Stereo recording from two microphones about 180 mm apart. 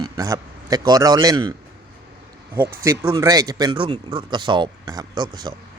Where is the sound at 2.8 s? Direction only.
15° right (ahead or behind).